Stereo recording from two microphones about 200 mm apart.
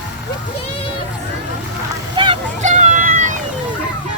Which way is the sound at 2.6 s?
35° right (ahead or behind).